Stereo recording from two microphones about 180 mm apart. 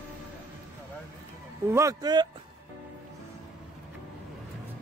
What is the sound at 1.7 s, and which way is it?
Speech, 20° right (ahead or behind).